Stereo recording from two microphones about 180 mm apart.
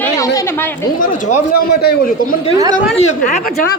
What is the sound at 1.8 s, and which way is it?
Speech, 60° left (ahead or behind).